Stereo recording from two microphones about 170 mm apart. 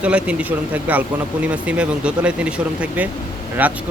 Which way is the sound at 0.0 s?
5° right (ahead or behind).